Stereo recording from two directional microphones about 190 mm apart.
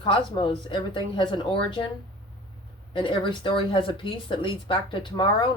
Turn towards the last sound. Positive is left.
turn(degrees=25)  # may be behind; listen again after turning